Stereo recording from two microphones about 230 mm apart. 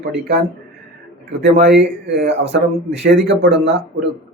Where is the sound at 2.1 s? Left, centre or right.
Right.